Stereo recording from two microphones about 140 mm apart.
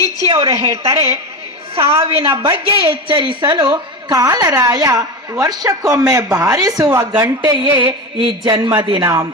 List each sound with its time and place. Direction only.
0.3 s a woman's voice: 45° right (ahead or behind)
0.9 s a woman's voice: 20° right (ahead or behind)
2.0 s a woman's voice: 45° right (ahead or behind); by 7.7 s 25° right (ahead or behind)
7.8 s a sound: 15° right (ahead or behind)
8.4 s a man's voice: 30° right (ahead or behind)
9.0 s a woman's voice: 20° right (ahead or behind)